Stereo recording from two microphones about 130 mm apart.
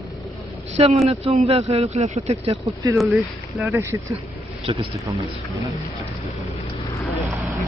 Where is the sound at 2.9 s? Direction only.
Centre (ahead or behind).